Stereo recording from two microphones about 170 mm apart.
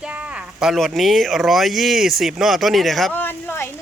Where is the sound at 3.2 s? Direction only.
10° left (ahead or behind).